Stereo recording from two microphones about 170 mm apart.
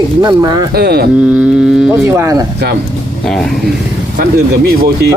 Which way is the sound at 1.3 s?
5° right (ahead or behind).